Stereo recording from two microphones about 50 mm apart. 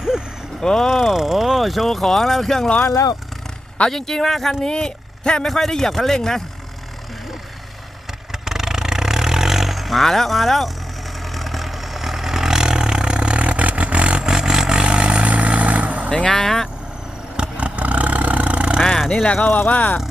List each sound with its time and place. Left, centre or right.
0.6 s speech: centre
0.9 s speech: centre
3.8 s speech: centre
4.6 s speech: centre
5.5 s speech: centre
8.3 s vehicle: centre; by 16.0 s right
16.0 s speech: centre
17.3 s vehicle: right
19.1 s speech: left